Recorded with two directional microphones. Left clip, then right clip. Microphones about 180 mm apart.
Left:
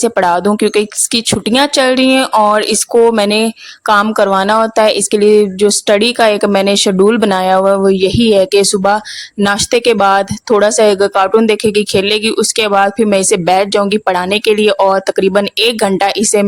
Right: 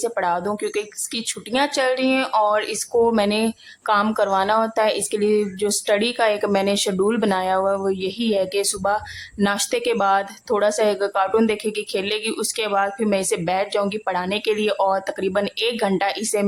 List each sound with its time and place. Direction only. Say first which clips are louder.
0.0 s speech: left 11 dB; 50° left (ahead or behind)